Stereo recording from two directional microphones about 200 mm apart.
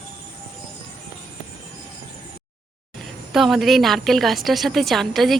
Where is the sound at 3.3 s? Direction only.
Centre (ahead or behind).